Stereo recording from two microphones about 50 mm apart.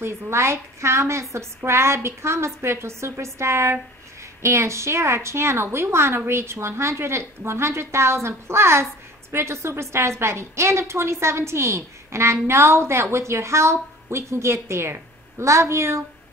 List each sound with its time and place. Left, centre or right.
0.0 s a woman's voice: right